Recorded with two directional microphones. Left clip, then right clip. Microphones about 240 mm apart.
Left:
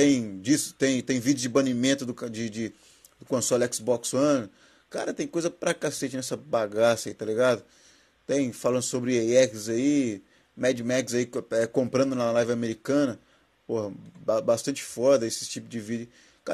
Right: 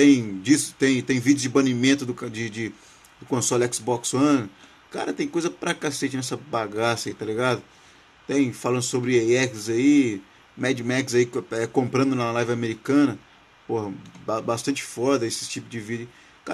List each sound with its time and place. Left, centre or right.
0.0 s speech: centre